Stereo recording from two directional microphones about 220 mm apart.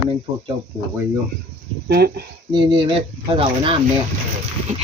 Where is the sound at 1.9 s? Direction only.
45° right (ahead or behind).